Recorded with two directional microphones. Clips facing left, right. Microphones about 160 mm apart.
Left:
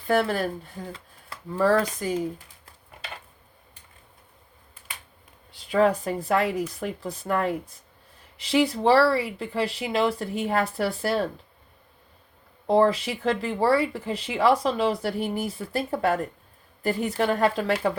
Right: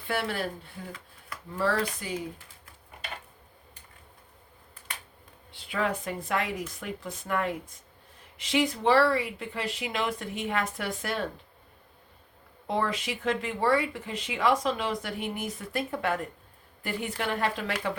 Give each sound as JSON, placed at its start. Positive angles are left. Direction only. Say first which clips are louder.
{"t": 0.1, "sound": "speech", "louder": "left 7 dB", "side_deg": 40}
{"t": 1.3, "sound": "a sound", "louder": "even", "side_deg": 30}
{"t": 2.0, "sound": "speech", "louder": "left 7 dB", "side_deg": 40}
{"t": 5.5, "sound": "speech", "louder": "left 9 dB", "side_deg": 40}
{"t": 12.6, "sound": "speech", "louder": "left 9 dB", "side_deg": 35}